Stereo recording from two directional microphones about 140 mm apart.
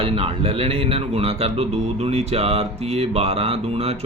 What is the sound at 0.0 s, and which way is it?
A man's voice, 40° right (ahead or behind).